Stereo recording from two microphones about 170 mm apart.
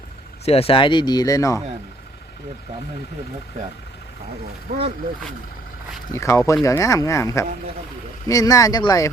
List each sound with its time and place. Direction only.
0.4 s speech: 35° left (ahead or behind); by 1.6 s 20° left (ahead or behind)
4.7 s speech: 55° right (ahead or behind)
6.1 s speech: 15° left (ahead or behind)